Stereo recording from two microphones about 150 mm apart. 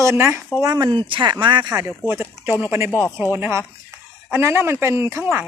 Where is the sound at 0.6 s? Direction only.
25° right (ahead or behind).